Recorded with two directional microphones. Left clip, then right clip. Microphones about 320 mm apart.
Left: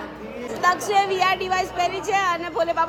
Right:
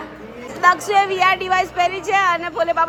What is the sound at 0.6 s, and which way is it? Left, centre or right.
A woman's voice, centre.